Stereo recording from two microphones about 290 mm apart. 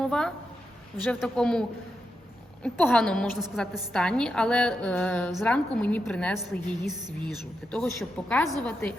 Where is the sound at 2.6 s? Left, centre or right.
Centre.